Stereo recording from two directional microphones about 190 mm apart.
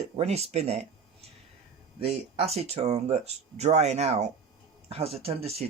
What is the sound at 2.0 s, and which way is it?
Speech, 35° right (ahead or behind).